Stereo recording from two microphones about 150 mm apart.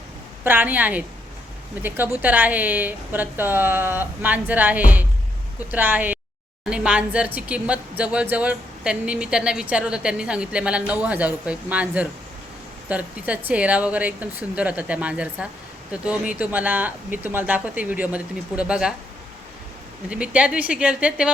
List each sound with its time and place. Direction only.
0.4 s speech: 10° right (ahead or behind)
20.1 s speech: 5° right (ahead or behind)